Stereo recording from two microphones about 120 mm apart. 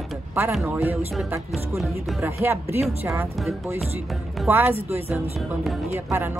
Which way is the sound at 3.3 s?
Centre (ahead or behind).